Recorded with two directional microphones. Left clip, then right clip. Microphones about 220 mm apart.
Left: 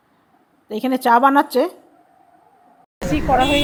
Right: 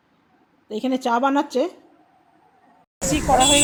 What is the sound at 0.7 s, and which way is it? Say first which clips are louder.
A woman's voice: left 6 dB; 10° left (ahead or behind).